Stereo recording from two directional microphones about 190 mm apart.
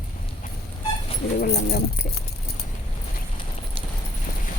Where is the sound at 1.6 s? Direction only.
55° left (ahead or behind).